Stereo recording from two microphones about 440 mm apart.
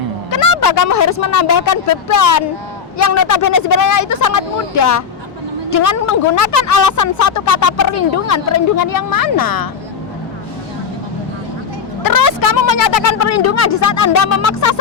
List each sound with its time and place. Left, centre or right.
0.3 s a woman's voice: left
12.0 s a woman's voice: left